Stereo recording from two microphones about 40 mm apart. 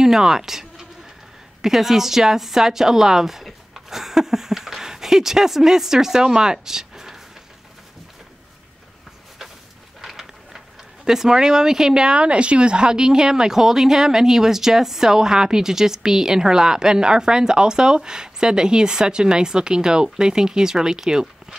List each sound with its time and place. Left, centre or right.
0.0 s a woman's voice: centre
10.0 s a sound: centre
11.1 s speech: centre